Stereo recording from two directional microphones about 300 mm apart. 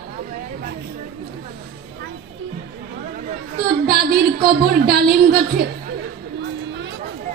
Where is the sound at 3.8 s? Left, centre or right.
Right.